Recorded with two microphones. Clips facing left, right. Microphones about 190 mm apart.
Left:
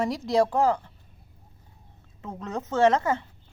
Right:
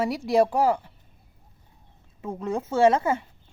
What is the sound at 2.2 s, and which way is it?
Speech, 10° right (ahead or behind).